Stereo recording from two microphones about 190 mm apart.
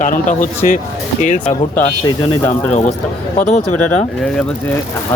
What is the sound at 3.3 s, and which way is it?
Speech, 40° left (ahead or behind).